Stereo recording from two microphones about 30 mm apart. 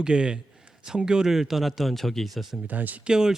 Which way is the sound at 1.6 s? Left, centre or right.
Centre.